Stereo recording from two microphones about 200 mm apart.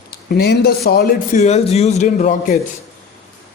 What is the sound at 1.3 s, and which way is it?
A man's voice, 35° left (ahead or behind).